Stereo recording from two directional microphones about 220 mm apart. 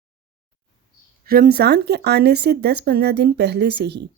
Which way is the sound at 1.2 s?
40° right (ahead or behind).